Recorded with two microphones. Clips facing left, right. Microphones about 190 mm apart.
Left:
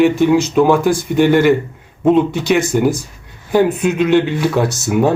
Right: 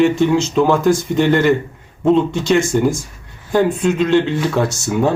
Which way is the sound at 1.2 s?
Centre (ahead or behind).